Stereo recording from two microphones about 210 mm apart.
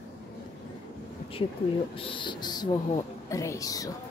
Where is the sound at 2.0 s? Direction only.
25° left (ahead or behind).